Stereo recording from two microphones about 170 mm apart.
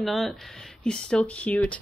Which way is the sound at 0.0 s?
Centre (ahead or behind).